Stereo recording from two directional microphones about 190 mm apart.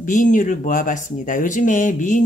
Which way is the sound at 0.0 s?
45° left (ahead or behind).